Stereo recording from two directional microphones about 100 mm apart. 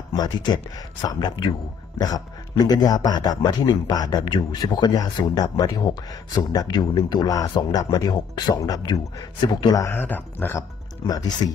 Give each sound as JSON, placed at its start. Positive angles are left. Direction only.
{"t": 0.1, "sound": "a man's voice", "side_deg": 40}
{"t": 9.4, "sound": "a man's voice", "side_deg": 50}
{"t": 9.8, "sound": "speech", "side_deg": 20}
{"t": 11.1, "sound": "speech", "side_deg": 40}